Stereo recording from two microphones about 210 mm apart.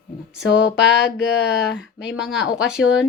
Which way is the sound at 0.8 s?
55° left (ahead or behind).